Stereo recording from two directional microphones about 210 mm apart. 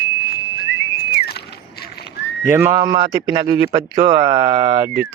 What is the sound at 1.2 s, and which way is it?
Horse, 50° left (ahead or behind).